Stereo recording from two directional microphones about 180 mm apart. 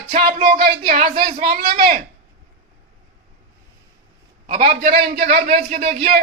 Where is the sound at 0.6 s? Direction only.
55° right (ahead or behind).